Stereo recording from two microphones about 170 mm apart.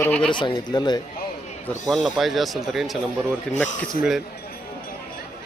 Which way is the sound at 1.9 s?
Centre (ahead or behind).